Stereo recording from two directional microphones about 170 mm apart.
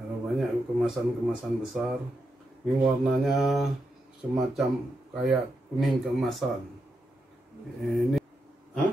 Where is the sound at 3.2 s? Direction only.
Centre (ahead or behind).